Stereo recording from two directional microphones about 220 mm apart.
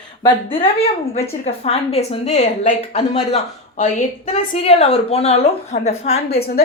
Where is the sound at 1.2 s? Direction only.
30° left (ahead or behind).